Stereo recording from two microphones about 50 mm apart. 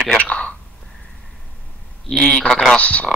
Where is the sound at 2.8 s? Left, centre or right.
Left.